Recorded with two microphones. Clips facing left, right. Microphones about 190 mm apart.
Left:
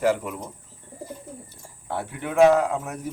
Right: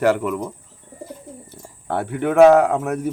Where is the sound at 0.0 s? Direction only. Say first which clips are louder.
Right 5 dB; 70° right (ahead or behind).